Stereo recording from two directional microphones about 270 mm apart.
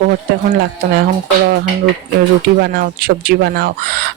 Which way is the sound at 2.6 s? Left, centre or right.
Right.